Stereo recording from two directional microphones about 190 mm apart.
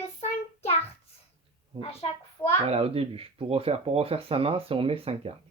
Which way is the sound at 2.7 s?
30° right (ahead or behind).